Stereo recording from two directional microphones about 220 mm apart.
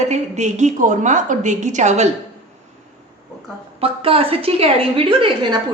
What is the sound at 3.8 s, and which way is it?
A woman's voice, 25° right (ahead or behind).